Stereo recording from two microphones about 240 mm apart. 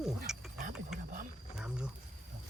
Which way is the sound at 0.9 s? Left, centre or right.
Centre.